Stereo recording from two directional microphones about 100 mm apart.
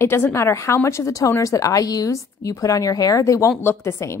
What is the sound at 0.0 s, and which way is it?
A woman's voice, 25° left (ahead or behind).